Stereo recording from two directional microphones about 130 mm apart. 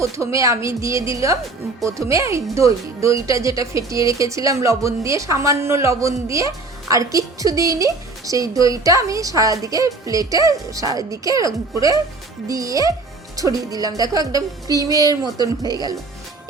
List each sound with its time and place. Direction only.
0.0 s speech: 25° right (ahead or behind)